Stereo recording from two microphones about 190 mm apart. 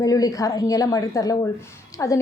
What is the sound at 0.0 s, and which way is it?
A woman's voice, 20° left (ahead or behind).